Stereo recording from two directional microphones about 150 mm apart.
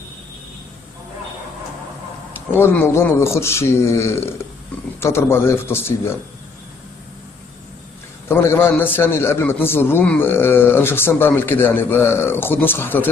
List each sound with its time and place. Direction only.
2.5 s a man's voice: 15° left (ahead or behind)
8.3 s a man's voice: 15° left (ahead or behind)